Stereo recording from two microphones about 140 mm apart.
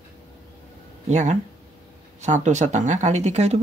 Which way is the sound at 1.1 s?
60° right (ahead or behind).